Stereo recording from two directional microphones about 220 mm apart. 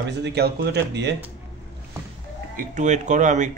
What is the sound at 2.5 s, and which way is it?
Speech, 35° right (ahead or behind).